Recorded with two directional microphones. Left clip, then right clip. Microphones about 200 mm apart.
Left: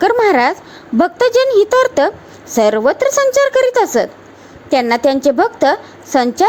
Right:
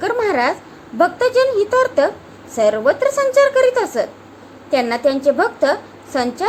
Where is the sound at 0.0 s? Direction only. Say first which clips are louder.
Left 6 dB; 40° left (ahead or behind).